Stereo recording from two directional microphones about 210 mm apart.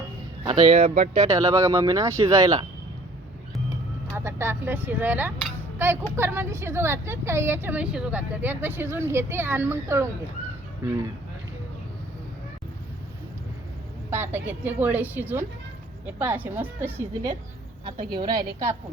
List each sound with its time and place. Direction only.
0.4 s a woman's voice: 25° right (ahead or behind)
4.1 s a woman's voice: 10° right (ahead or behind)
14.3 s a woman's voice: 10° right (ahead or behind)
17.8 s a woman's voice: 25° right (ahead or behind)